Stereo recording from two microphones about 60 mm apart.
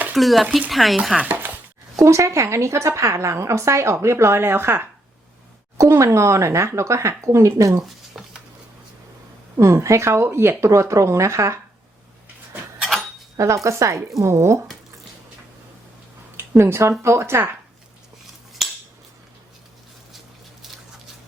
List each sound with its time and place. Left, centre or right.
0.2 s speech: centre
1.3 s a sound: right
2.0 s a woman's voice: right
5.7 s speech: right
8.1 s a sound: centre
9.6 s a woman's voice: right
10.7 s speech: right
13.3 s speech: right
16.4 s a woman's voice: right
18.6 s scissors: centre